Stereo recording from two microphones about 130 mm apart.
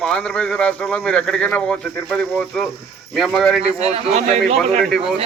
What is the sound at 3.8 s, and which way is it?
Speech, 55° right (ahead or behind).